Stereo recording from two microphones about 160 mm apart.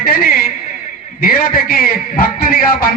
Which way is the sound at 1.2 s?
65° left (ahead or behind).